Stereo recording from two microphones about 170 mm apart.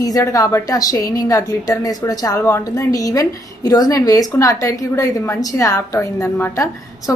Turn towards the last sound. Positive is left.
turn(degrees=20)  # may be behind; listen again after turning